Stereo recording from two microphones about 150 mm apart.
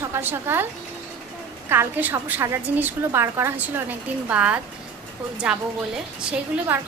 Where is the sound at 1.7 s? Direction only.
15° right (ahead or behind).